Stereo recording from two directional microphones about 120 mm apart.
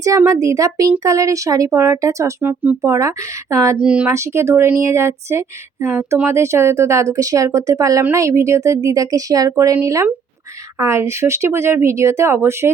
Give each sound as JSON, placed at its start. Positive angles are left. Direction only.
{"t": 0.3, "sound": "speech", "side_deg": -30}
{"t": 3.8, "sound": "speech", "side_deg": -10}
{"t": 4.1, "sound": "speech", "side_deg": -25}